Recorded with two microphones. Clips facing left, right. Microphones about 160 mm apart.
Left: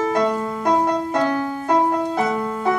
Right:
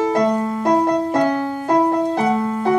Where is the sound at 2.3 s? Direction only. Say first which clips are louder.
Right 3 dB; 5° right (ahead or behind).